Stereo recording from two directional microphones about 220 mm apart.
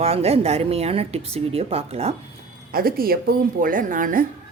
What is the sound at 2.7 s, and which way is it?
A woman's voice, 40° right (ahead or behind).